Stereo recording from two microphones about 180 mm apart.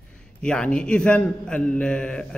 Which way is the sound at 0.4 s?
5° left (ahead or behind).